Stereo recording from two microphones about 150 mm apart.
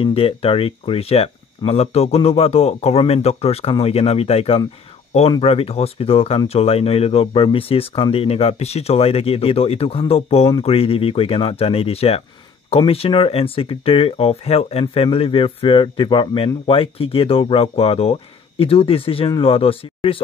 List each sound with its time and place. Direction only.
0.0 s speech: 40° left (ahead or behind)